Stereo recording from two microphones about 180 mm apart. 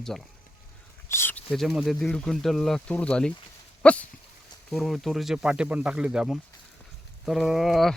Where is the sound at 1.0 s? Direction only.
15° left (ahead or behind).